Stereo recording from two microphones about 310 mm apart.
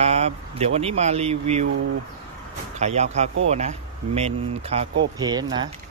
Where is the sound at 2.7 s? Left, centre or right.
Right.